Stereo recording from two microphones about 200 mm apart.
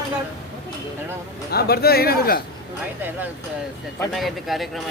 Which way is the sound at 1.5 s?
50° left (ahead or behind).